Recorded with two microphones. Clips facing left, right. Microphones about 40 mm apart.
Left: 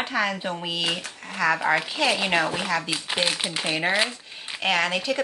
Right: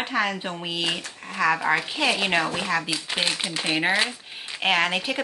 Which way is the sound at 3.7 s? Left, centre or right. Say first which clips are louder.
Right 1 dB; centre.